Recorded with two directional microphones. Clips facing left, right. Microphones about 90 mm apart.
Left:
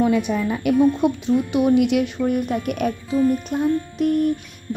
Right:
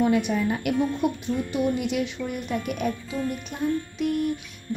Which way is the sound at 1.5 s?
75° left (ahead or behind).